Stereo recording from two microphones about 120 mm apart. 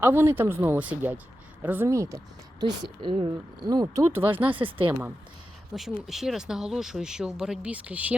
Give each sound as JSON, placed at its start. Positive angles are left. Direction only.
{"t": 0.0, "sound": "speech", "side_deg": -20}
{"t": 3.0, "sound": "speech", "side_deg": -40}
{"t": 4.4, "sound": "speech", "side_deg": -45}
{"t": 5.7, "sound": "speech", "side_deg": 0}